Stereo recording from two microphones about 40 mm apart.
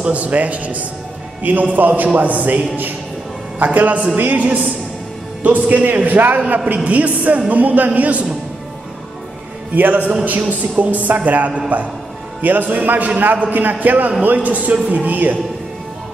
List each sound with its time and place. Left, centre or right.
0.1 s a man's voice: right
9.8 s a man's voice: right